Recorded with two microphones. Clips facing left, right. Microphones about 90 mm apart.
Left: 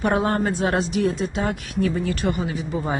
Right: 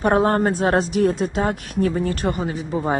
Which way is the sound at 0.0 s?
40° right (ahead or behind).